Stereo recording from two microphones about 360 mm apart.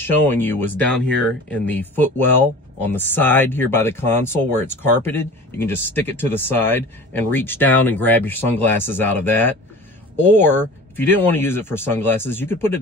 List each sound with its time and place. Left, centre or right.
0.0 s speech: centre